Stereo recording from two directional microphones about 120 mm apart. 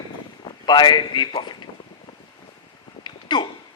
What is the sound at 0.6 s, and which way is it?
Speech, 40° left (ahead or behind).